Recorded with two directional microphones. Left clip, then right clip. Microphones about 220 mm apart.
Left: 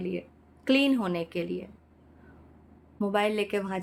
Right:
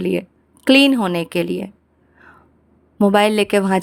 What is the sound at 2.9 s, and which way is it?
Speech, 45° right (ahead or behind).